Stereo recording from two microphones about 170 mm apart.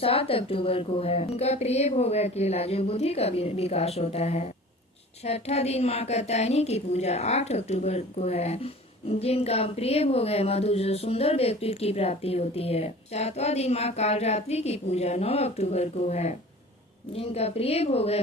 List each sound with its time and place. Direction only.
0.0 s a woman's voice: 35° left (ahead or behind)